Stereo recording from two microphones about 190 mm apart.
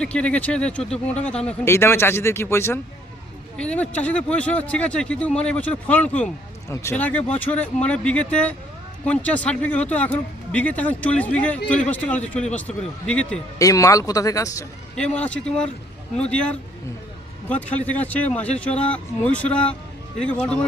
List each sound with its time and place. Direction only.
0.0 s speech: 5° left (ahead or behind)
13.6 s speech: 15° left (ahead or behind)
14.9 s speech: 5° left (ahead or behind)